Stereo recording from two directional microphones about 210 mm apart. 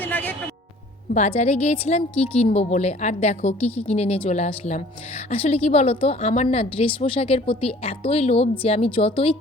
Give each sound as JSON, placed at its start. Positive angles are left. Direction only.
{"t": 0.0, "sound": "music", "side_deg": 10}
{"t": 1.1, "sound": "a woman's voice", "side_deg": 30}